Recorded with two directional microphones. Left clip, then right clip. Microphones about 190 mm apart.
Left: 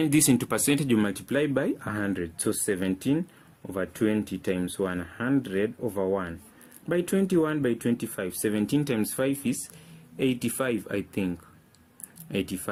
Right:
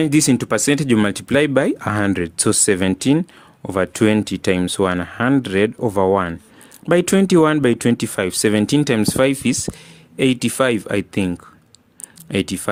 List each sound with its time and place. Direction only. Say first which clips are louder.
0.0 s speech: right 7 dB; 30° right (ahead or behind)